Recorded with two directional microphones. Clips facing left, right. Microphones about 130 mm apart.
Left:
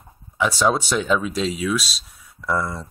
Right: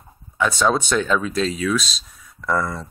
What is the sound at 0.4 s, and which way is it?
Speech, 10° left (ahead or behind).